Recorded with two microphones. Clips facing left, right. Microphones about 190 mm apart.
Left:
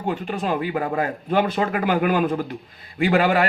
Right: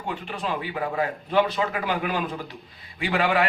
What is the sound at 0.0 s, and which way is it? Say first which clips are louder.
A man's voice: left 6 dB; 45° left (ahead or behind).